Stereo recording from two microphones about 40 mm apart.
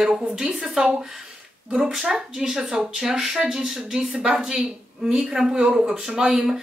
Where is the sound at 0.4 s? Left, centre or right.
Centre.